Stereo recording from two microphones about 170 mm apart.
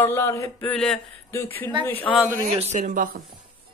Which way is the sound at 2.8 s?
55° right (ahead or behind).